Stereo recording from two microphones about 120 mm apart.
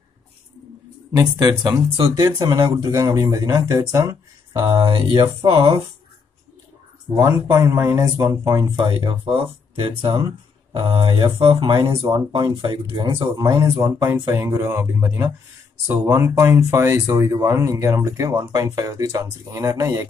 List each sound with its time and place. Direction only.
1.4 s speech: 30° right (ahead or behind)
4.6 s speech: 45° right (ahead or behind)
7.2 s speech: 25° right (ahead or behind)
8.7 s speech: 45° right (ahead or behind); by 20.1 s 30° right (ahead or behind)